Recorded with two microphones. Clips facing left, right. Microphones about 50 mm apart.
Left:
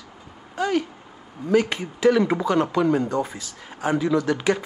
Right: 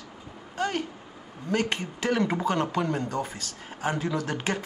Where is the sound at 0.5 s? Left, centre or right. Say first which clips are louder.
Left 6 dB; centre.